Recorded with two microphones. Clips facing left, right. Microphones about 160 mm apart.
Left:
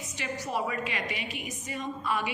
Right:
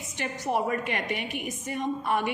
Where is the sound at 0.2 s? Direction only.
50° right (ahead or behind).